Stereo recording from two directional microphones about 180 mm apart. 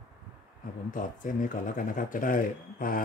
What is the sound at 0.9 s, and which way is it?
Speech, 50° left (ahead or behind).